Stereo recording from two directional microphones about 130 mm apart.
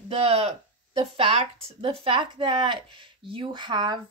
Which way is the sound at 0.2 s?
50° right (ahead or behind).